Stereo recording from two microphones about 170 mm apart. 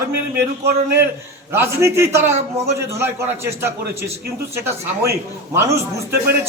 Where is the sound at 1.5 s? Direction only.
15° right (ahead or behind).